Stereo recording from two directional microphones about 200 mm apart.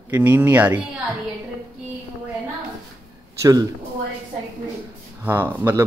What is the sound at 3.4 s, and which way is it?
Speech, 20° right (ahead or behind).